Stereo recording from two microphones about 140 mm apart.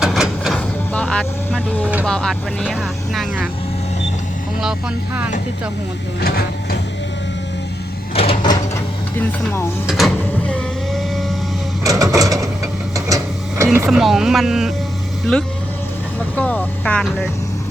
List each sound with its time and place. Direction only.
0.0 s a sound: 5° right (ahead or behind)
0.9 s vehicle: 5° left (ahead or behind)
2.0 s speech: 5° left (ahead or behind)
6.2 s printer: 90° left
8.1 s a sound: 45° left (ahead or behind)
9.8 s speech: centre (ahead or behind)
10.4 s vehicle: 10° left (ahead or behind)
11.8 s printer: 25° right (ahead or behind)
13.7 s speech: 5° right (ahead or behind)
16.3 s speech: 10° left (ahead or behind)